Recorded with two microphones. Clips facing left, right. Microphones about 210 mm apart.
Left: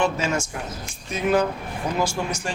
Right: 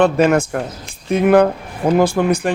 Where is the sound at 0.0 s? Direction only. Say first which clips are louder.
Right 10 dB; 60° right (ahead or behind).